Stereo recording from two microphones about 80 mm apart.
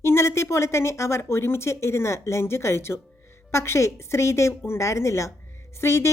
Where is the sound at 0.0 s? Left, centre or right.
Left.